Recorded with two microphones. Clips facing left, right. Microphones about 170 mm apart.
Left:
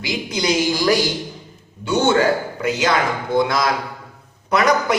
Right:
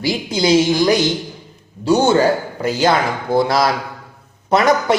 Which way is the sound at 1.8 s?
35° right (ahead or behind).